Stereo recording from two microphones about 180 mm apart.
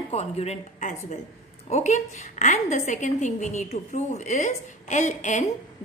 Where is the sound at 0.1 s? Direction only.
35° left (ahead or behind).